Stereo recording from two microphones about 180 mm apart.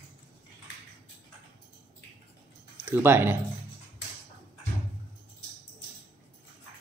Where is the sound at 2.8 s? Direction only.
10° right (ahead or behind).